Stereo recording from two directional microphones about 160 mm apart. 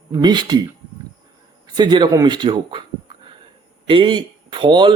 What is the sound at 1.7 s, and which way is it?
Speech, 25° right (ahead or behind).